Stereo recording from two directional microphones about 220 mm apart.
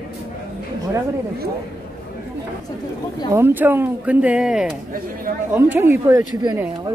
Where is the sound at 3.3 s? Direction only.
10° right (ahead or behind).